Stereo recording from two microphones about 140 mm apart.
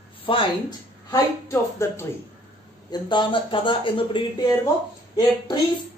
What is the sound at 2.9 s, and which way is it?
Speech, 35° left (ahead or behind).